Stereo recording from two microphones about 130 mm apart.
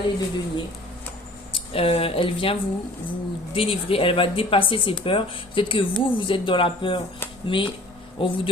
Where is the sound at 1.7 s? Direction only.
45° left (ahead or behind).